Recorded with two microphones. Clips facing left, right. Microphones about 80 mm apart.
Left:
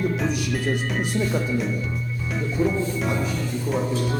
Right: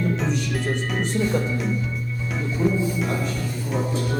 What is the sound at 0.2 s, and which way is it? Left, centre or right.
Music, centre.